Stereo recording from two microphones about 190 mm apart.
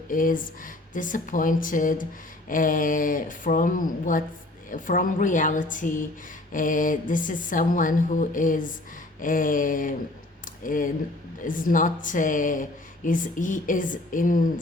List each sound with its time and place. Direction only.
0.1 s speech: 45° left (ahead or behind)
10.4 s a sound: 45° left (ahead or behind)
11.4 s speech: 45° left (ahead or behind)